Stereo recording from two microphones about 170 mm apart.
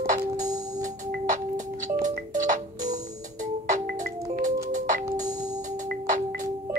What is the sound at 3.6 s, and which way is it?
Music, 50° right (ahead or behind).